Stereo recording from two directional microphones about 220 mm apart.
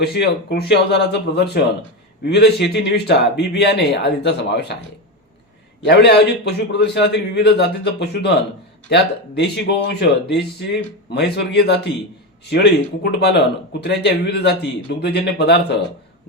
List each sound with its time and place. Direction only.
0.0 s speech: 45° left (ahead or behind)
5.8 s speech: 50° left (ahead or behind)